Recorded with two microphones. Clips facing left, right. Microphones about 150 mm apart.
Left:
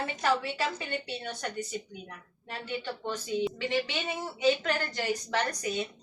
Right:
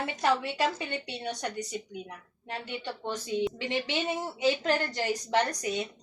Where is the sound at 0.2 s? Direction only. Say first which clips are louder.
Right 2 dB; 20° right (ahead or behind).